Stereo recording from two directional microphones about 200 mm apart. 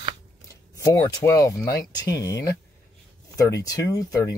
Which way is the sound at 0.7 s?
15° left (ahead or behind).